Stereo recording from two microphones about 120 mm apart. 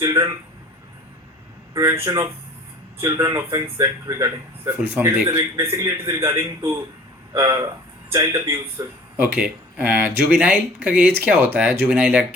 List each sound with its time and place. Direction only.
0.0 s a man's voice: 25° right (ahead or behind)
1.7 s a man's voice: 25° right (ahead or behind)
5.7 s a man's voice: 30° right (ahead or behind); by 12.2 s 10° right (ahead or behind)